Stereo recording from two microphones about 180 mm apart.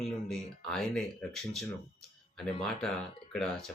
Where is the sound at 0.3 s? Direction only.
Centre (ahead or behind).